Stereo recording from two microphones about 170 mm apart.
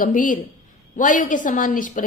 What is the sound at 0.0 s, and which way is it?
A woman's voice, 50° left (ahead or behind).